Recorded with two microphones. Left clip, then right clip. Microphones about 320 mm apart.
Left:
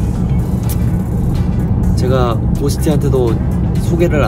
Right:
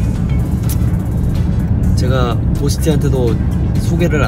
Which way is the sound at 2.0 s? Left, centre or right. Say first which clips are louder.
Left 3 dB; centre.